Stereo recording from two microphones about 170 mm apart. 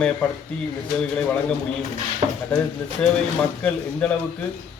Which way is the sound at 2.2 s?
35° right (ahead or behind).